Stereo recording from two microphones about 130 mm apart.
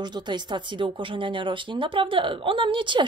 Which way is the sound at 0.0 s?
35° right (ahead or behind).